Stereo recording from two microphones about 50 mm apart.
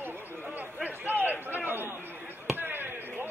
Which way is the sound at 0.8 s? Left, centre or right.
Right.